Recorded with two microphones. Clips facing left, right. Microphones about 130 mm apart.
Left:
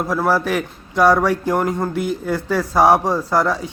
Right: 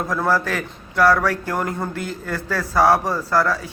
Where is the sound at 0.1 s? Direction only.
10° left (ahead or behind).